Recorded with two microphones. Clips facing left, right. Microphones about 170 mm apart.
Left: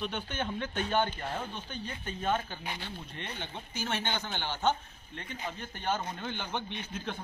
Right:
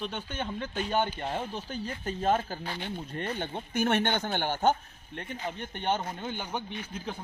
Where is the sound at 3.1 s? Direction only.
50° right (ahead or behind).